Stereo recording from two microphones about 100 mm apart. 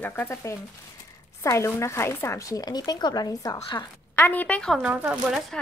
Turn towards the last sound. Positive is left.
turn(degrees=-5)  # may be behind; listen again after turning